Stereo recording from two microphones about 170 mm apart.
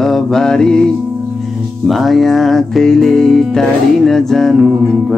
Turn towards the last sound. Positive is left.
turn(degrees=0)  # may be behind; listen again after turning